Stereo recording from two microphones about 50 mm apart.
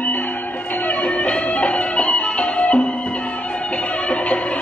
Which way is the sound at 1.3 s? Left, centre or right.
Left.